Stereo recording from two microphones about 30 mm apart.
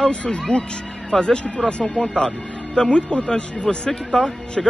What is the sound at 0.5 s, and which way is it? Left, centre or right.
Speech, left.